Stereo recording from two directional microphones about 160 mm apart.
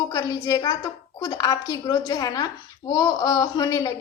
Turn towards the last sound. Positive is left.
turn(degrees=25)  # may be behind; listen again after turning